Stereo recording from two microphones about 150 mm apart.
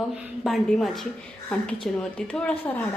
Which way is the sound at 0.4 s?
Centre (ahead or behind).